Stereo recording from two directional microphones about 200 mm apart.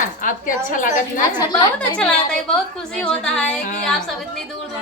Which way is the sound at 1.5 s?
5° left (ahead or behind).